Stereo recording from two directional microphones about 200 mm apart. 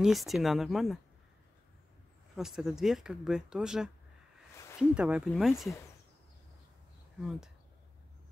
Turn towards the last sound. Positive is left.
turn(degrees=-5)  # may be behind; listen again after turning